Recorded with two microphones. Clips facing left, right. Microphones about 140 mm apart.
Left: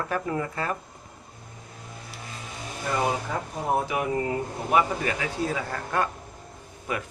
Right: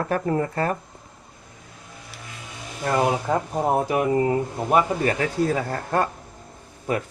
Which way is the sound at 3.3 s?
65° right (ahead or behind).